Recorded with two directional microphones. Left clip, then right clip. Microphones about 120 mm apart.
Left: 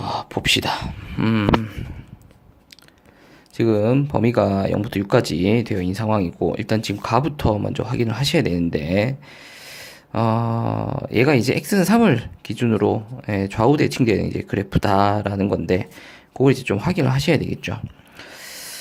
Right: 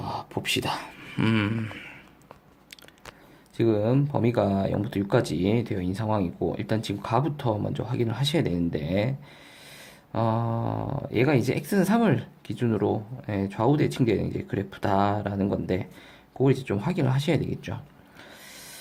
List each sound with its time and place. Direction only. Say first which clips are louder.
0.0 s speech: left 8 dB; 25° left (ahead or behind)
3.6 s speech: left 5 dB; 30° left (ahead or behind)
18.2 s a sound: left 9 dB; 30° left (ahead or behind)